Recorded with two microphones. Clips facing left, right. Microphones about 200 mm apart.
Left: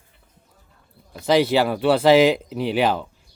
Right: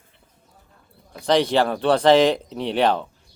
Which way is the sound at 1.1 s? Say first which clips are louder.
Left 1 dB; 5° left (ahead or behind).